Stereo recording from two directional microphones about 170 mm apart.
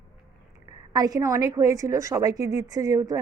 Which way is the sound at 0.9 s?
20° right (ahead or behind).